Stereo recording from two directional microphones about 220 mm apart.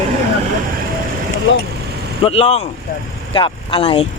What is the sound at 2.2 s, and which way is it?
Speech, 25° left (ahead or behind).